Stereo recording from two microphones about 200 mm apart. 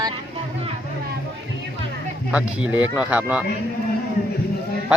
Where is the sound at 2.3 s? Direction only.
5° right (ahead or behind).